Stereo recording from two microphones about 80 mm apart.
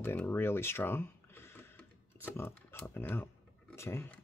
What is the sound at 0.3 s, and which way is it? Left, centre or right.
Speech, left.